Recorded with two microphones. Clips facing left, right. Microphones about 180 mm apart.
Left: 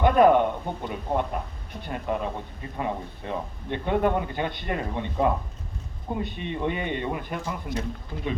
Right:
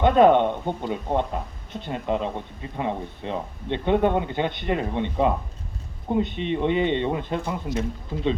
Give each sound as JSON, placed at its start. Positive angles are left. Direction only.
{"t": 0.0, "sound": "speech", "side_deg": -25}